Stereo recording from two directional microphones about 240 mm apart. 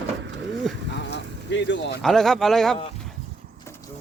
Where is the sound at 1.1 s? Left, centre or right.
Left.